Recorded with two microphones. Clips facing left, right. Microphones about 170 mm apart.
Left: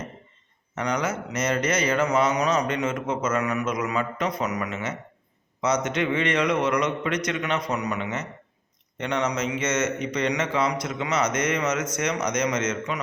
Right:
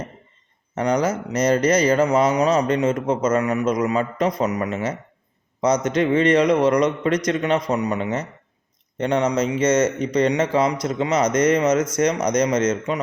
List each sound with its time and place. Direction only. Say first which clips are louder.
0.8 s speech: right 6 dB; 35° right (ahead or behind)